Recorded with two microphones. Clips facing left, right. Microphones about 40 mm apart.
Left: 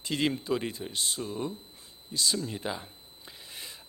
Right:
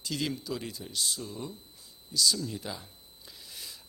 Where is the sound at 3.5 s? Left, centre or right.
Left.